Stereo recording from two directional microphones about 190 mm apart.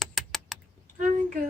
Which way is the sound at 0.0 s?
Centre (ahead or behind).